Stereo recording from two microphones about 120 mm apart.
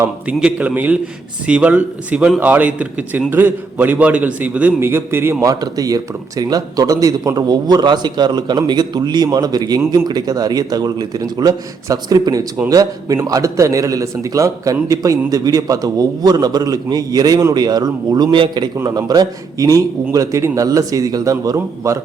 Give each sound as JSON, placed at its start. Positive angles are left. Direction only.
{"t": 0.0, "sound": "a man's voice", "side_deg": -10}
{"t": 5.4, "sound": "a man's voice", "side_deg": -30}